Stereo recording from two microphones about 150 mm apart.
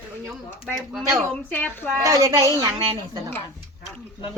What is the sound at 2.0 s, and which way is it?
Speech, 20° right (ahead or behind).